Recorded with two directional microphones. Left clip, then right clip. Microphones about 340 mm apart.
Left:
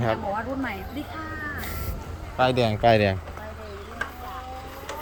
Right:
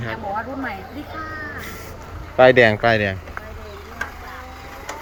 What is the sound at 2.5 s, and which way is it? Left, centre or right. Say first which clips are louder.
Speech: right 6 dB; centre.